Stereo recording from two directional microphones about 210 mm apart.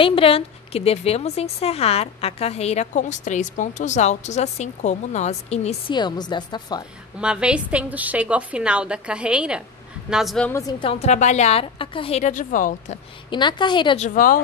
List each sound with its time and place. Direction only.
0.0 s a woman's voice: 25° left (ahead or behind)
7.2 s a woman's voice: 5° right (ahead or behind)
10.7 s a woman's voice: 25° left (ahead or behind); by 12.9 s 40° left (ahead or behind)
13.3 s a woman's voice: 20° left (ahead or behind)
14.0 s a woman's voice: 40° left (ahead or behind)